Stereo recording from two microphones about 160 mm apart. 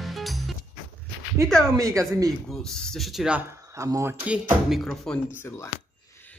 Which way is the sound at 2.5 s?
5° left (ahead or behind).